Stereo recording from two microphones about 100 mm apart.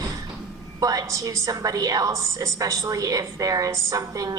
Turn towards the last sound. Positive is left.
turn(degrees=-35)  # may be behind; listen again after turning